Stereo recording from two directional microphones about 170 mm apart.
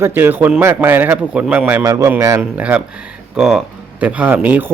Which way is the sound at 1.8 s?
20° right (ahead or behind).